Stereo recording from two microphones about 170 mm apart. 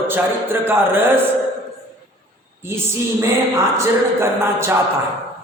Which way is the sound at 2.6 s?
15° right (ahead or behind).